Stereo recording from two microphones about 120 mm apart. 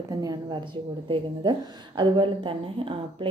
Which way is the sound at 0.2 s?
35° right (ahead or behind).